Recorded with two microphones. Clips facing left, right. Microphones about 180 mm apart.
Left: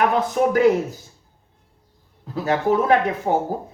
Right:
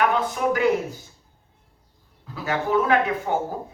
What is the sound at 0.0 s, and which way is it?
Speech, 40° left (ahead or behind).